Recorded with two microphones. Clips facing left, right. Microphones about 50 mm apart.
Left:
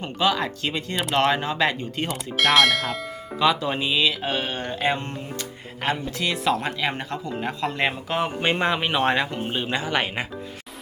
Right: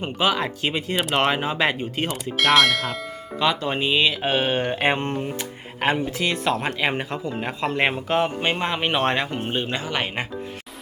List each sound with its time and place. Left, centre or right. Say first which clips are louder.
0.0 s speech: right 1 dB; centre
3.8 s speech: right 2 dB; centre
4.3 s speech: right 5 dB; right
4.7 s music: right 3 dB; right
6.1 s speech: right 1 dB; centre
6.7 s speech: right 2 dB; right
6.9 s speech: right 2 dB; centre
7.8 s speech: right 5 dB; centre
8.1 s speech: right 2 dB; centre
9.6 s speech: left 2 dB; centre